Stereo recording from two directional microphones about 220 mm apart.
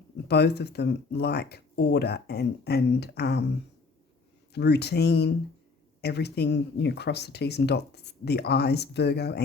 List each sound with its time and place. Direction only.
0.3 s speech: 50° left (ahead or behind)
4.5 s speech: 50° left (ahead or behind)